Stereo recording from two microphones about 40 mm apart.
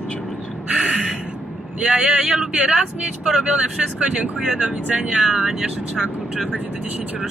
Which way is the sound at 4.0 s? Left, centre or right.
Right.